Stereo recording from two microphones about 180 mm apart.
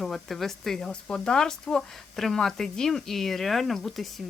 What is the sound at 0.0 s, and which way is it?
A woman's voice, centre (ahead or behind).